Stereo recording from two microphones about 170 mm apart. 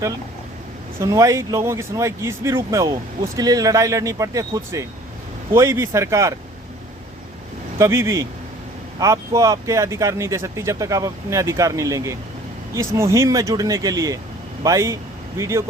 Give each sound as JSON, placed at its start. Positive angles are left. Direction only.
{"t": 0.9, "sound": "speech", "side_deg": -20}
{"t": 7.8, "sound": "speech", "side_deg": -15}